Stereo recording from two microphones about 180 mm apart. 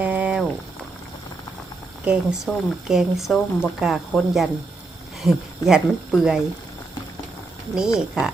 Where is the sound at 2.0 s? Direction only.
5° right (ahead or behind).